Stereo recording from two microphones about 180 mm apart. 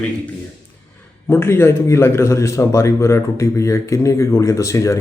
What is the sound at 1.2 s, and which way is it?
A man's voice, 15° left (ahead or behind).